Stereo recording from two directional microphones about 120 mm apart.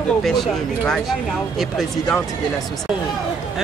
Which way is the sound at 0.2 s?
Centre (ahead or behind).